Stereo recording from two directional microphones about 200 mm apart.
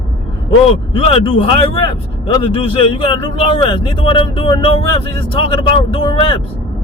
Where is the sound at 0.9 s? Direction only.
30° left (ahead or behind).